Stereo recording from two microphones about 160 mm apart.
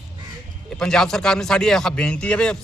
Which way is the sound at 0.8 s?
5° left (ahead or behind).